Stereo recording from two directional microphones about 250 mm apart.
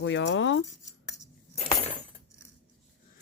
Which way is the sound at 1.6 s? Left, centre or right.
Left.